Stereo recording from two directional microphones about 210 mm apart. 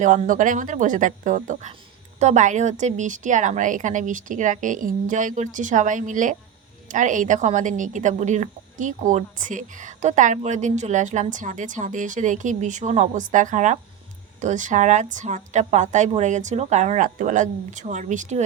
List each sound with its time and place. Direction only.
0.0 s speech: 35° right (ahead or behind)